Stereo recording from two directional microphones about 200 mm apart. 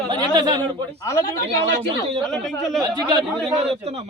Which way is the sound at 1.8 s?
25° right (ahead or behind).